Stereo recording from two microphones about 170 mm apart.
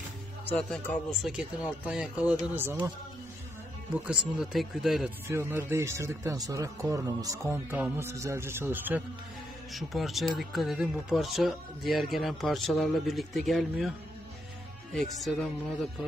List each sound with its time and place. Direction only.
0.5 s speech: 10° left (ahead or behind); by 2.9 s 15° right (ahead or behind)
3.9 s speech: 5° right (ahead or behind)
5.3 s speech: 15° right (ahead or behind)
9.7 s speech: centre (ahead or behind)